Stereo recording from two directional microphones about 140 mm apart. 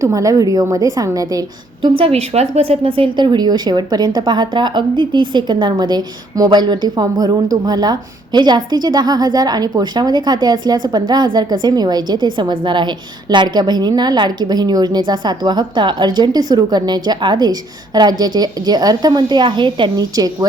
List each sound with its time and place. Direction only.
0.0 s a woman's voice: 25° right (ahead or behind)
1.8 s a woman's voice: 40° right (ahead or behind)